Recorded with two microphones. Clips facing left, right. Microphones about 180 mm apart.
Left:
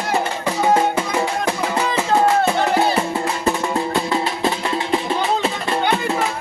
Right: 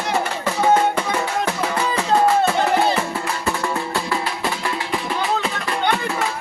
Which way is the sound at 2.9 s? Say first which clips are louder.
Left 3 dB; 25° left (ahead or behind).